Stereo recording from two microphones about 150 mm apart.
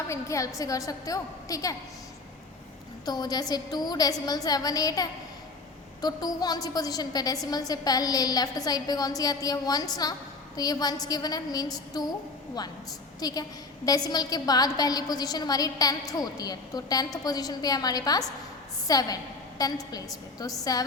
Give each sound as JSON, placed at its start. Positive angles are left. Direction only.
{"t": 0.1, "sound": "a woman's voice", "side_deg": 20}
{"t": 3.1, "sound": "a woman's voice", "side_deg": 25}
{"t": 13.1, "sound": "a woman's voice", "side_deg": 25}